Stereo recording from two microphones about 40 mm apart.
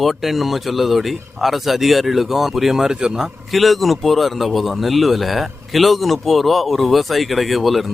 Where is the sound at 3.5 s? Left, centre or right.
Centre.